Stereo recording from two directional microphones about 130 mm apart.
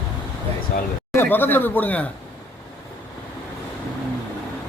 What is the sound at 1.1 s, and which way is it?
Speech, 15° left (ahead or behind).